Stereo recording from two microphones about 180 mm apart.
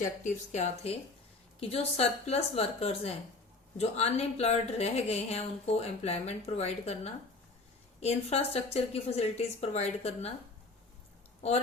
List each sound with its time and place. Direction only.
0.5 s a woman's voice: 40° left (ahead or behind)